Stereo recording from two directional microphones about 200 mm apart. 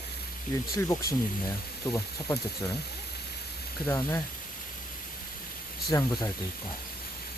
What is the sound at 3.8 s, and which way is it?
Speech, 15° left (ahead or behind).